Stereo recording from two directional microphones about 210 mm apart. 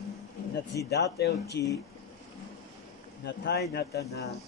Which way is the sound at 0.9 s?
50° left (ahead or behind).